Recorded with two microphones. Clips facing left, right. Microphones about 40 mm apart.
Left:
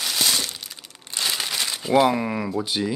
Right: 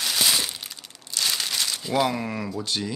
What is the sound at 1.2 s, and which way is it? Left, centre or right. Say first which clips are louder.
Crumpling: left 1 dB; centre.